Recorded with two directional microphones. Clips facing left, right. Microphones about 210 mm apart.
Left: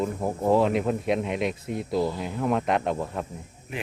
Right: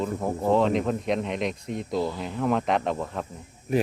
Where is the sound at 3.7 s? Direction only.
40° right (ahead or behind).